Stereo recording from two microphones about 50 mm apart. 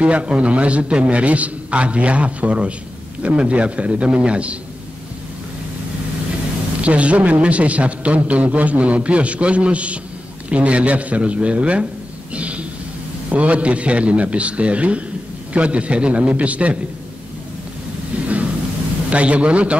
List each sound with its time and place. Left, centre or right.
0.0 s a man's voice: right
6.8 s a man's voice: right
12.4 s a sound: right
13.3 s a man's voice: right
19.0 s a man's voice: right